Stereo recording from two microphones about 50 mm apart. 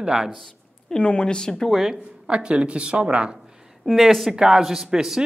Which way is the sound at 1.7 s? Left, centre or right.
Centre.